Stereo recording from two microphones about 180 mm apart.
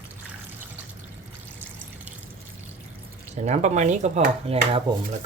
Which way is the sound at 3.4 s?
40° right (ahead or behind).